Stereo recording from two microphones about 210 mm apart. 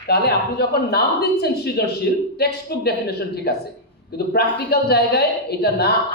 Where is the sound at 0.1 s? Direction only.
50° left (ahead or behind).